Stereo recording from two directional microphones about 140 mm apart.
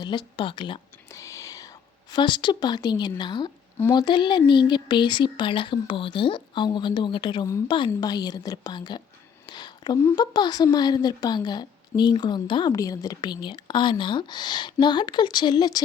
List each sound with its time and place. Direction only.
0.0 s speech: 35° left (ahead or behind)
1.1 s a woman's voice: 20° left (ahead or behind)
9.5 s a sound: 30° left (ahead or behind)
10.2 s speech: 30° left (ahead or behind)